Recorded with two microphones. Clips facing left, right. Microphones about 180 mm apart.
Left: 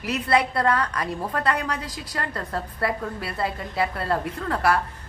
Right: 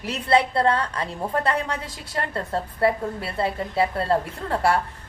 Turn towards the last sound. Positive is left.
turn(degrees=-25)  # may be behind; listen again after turning